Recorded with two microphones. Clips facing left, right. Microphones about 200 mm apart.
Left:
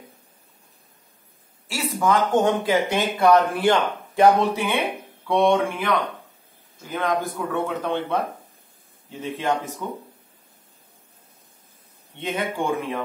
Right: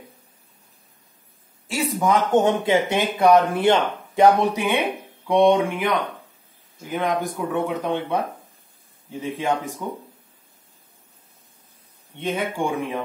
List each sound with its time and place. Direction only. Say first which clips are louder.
1.7 s speech: right 1 dB; 20° right (ahead or behind)
9.2 s speech: right 1 dB; 10° right (ahead or behind)
12.2 s speech: right 1 dB; 10° right (ahead or behind)